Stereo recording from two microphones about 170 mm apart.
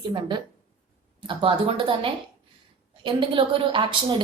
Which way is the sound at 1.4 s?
30° right (ahead or behind).